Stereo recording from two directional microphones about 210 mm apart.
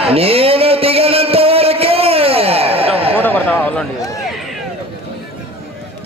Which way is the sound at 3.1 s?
10° left (ahead or behind).